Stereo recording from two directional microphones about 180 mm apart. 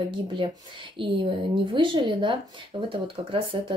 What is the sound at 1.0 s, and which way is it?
Speech, 30° right (ahead or behind).